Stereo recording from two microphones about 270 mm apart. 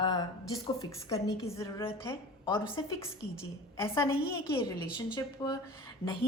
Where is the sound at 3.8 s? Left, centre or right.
Centre.